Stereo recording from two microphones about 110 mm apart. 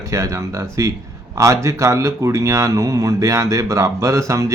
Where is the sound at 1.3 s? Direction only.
30° right (ahead or behind).